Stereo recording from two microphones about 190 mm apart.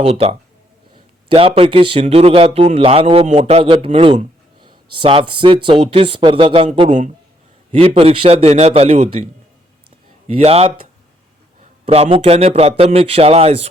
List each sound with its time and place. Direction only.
0.0 s a man's voice: 30° right (ahead or behind)
10.2 s a man's voice: 35° right (ahead or behind)
11.9 s a man's voice: 30° right (ahead or behind)